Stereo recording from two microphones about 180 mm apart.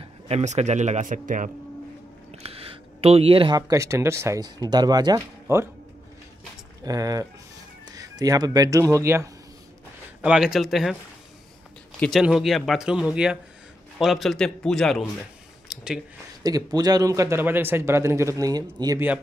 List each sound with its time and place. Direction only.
0.0 s a man's voice: 35° right (ahead or behind)
2.3 s speech: 35° right (ahead or behind); by 5.7 s 15° right (ahead or behind)
6.8 s speech: 20° right (ahead or behind)
10.2 s speech: 5° right (ahead or behind)
12.0 s speech: centre (ahead or behind)
16.4 s speech: 20° right (ahead or behind)